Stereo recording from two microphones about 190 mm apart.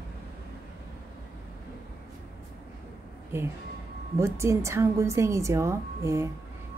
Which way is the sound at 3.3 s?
10° right (ahead or behind).